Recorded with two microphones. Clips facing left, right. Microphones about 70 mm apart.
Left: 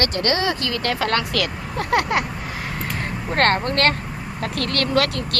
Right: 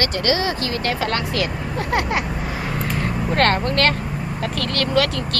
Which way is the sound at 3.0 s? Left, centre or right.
Left.